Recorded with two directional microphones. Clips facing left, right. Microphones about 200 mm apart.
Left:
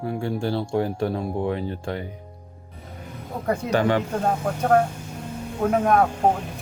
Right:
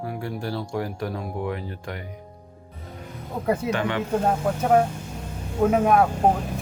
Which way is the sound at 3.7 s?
40° left (ahead or behind).